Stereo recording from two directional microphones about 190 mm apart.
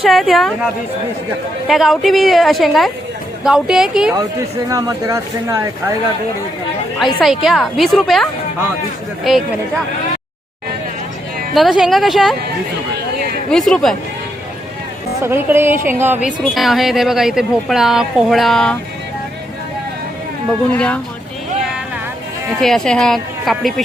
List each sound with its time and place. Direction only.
0.0 s speech: centre (ahead or behind)
4.2 s speech: 20° right (ahead or behind)
7.0 s speech: centre (ahead or behind)
11.5 s speech: centre (ahead or behind)
13.5 s speech: centre (ahead or behind)
15.2 s speech: 10° right (ahead or behind)
20.7 s speech: 5° left (ahead or behind)
22.6 s speech: centre (ahead or behind)